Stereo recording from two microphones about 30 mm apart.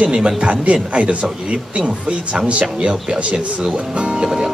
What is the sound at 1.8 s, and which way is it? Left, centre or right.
Speech, right.